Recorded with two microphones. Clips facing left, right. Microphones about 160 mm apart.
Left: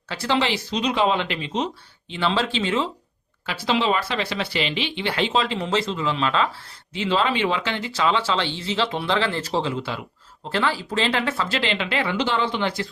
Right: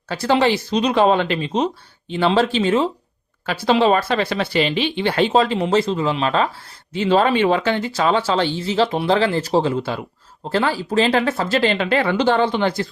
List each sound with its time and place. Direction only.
0.1 s speech: 45° right (ahead or behind)